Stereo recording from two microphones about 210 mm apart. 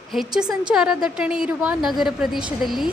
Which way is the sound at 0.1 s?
Centre (ahead or behind).